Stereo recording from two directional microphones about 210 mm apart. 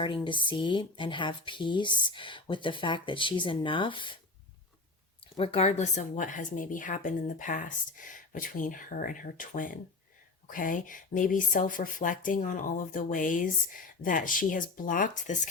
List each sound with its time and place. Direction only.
0.0 s speech: 20° left (ahead or behind)
5.4 s speech: 30° left (ahead or behind)